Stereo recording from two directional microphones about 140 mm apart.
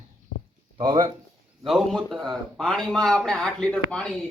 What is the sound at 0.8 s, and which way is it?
Speech, 30° right (ahead or behind).